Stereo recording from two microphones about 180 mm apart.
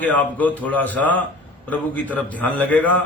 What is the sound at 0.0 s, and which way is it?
A man's voice, 10° left (ahead or behind).